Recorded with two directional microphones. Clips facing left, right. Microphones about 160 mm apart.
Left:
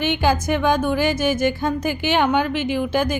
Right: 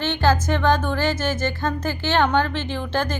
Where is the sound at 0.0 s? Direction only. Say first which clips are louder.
Left 1 dB; 15° left (ahead or behind).